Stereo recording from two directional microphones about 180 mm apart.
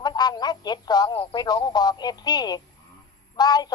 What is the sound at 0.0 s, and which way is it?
Speech, 25° left (ahead or behind).